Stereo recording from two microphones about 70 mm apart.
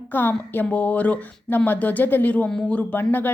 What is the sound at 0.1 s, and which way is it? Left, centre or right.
Speech, left.